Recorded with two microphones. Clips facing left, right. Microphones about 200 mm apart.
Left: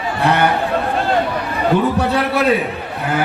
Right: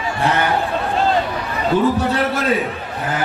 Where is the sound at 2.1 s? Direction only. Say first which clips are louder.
Left 3 dB; 60° left (ahead or behind).